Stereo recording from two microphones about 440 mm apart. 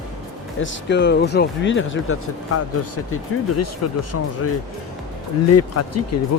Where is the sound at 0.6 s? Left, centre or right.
Left.